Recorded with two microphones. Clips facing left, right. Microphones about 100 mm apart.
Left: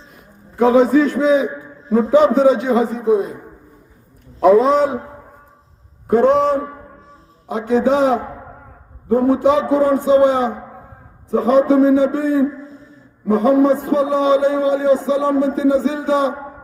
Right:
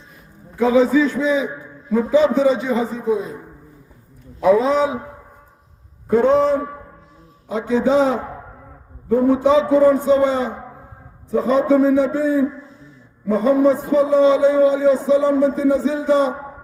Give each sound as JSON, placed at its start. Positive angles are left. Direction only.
{"t": 0.5, "sound": "a man's voice", "side_deg": 50}
{"t": 4.4, "sound": "a man's voice", "side_deg": 55}
{"t": 6.1, "sound": "a man's voice", "side_deg": 65}
{"t": 9.0, "sound": "speech", "side_deg": 40}
{"t": 9.5, "sound": "a man's voice", "side_deg": 70}
{"t": 14.9, "sound": "a sound", "side_deg": 90}